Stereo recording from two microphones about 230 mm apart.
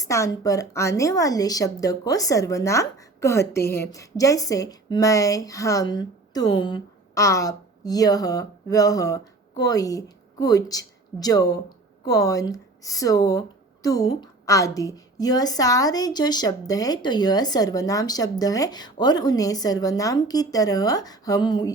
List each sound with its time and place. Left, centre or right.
0.1 s a woman's voice: centre